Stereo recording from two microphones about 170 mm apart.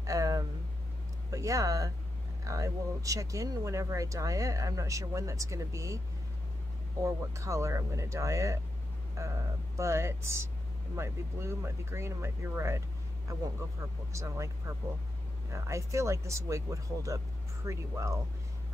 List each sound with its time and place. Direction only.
0.0 s a sound: 20° right (ahead or behind)
1.3 s speech: 20° right (ahead or behind)
7.0 s speech: 15° right (ahead or behind)
15.5 s speech: 15° right (ahead or behind)